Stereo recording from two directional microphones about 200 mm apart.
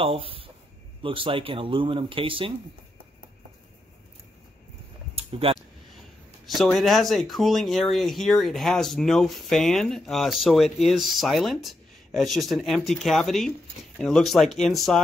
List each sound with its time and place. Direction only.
0.0 s speech: 25° right (ahead or behind)
5.1 s a sound: 30° right (ahead or behind)
6.4 s speech: centre (ahead or behind)